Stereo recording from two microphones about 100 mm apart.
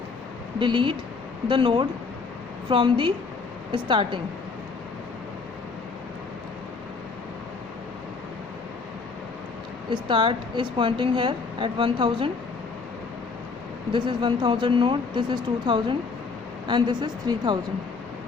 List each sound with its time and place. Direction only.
0.6 s a woman's voice: 55° right (ahead or behind)
9.9 s a woman's voice: 55° right (ahead or behind)
13.9 s speech: 55° right (ahead or behind)